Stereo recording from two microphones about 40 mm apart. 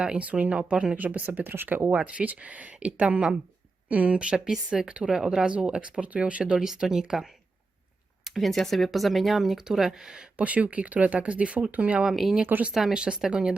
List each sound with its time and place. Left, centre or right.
0.2 s speech: right
0.9 s speech: right
1.9 s speech: right
4.4 s speech: centre
4.7 s speech: right
5.5 s speech: right
6.6 s speech: centre
8.2 s speech: centre
10.3 s speech: right
12.1 s speech: centre
12.9 s speech: right